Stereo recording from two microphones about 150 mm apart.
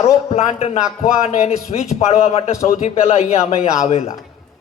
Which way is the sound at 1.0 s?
45° left (ahead or behind).